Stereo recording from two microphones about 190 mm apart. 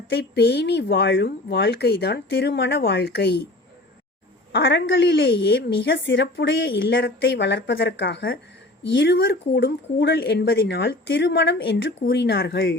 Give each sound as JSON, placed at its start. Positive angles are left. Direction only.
{"t": 0.1, "sound": "a woman's voice", "side_deg": 60}
{"t": 4.5, "sound": "a woman's voice", "side_deg": 60}